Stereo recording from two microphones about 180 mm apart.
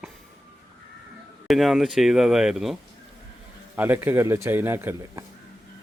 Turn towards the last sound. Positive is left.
turn(degrees=-15)  # may be behind; listen again after turning